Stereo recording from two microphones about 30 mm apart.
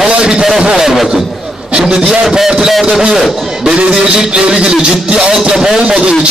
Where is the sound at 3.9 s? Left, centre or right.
Right.